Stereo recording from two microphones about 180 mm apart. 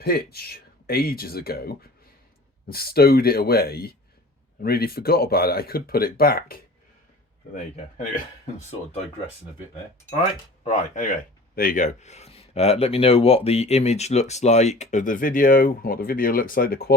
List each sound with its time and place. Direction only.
0.0 s speech: 60° left (ahead or behind); by 9.0 s 40° left (ahead or behind)
10.6 s speech: 40° left (ahead or behind); by 16.9 s 55° left (ahead or behind)